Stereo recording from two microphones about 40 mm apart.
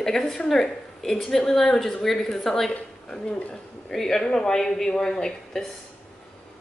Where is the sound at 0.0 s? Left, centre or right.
Centre.